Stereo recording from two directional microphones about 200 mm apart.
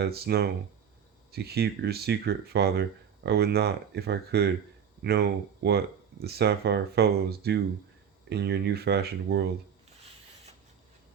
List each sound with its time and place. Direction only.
0.0 s speech: 55° right (ahead or behind)